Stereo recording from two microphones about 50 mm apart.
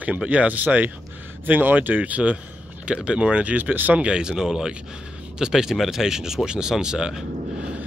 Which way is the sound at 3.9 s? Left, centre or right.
Centre.